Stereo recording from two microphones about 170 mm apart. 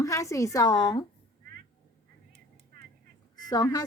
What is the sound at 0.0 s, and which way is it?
A woman's voice, 20° left (ahead or behind).